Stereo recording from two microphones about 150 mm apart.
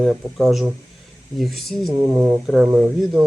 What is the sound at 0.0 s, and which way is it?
Speech, centre (ahead or behind).